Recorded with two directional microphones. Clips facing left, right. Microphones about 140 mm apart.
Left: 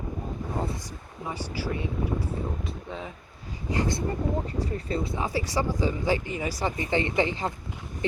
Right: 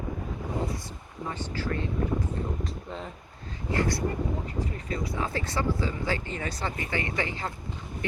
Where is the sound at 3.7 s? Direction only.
20° left (ahead or behind).